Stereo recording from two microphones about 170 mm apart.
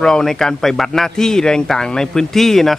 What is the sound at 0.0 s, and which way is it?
Speech, 5° left (ahead or behind).